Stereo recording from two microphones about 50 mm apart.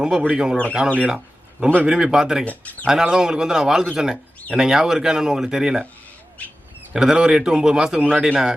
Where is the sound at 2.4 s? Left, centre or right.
Left.